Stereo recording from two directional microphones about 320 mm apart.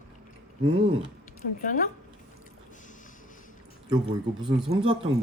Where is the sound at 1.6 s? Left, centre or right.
Left.